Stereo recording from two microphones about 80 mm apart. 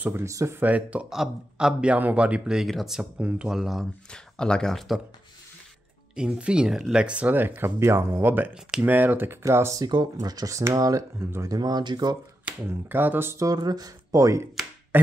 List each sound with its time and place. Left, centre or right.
0.2 s speech: right
0.6 s a man's voice: centre
1.1 s a man's voice: centre
3.2 s a man's voice: centre
4.1 s speech: centre
6.1 s a man's voice: centre; by 9.8 s right
9.8 s speech: right
12.6 s speech: right
13.4 s speech: right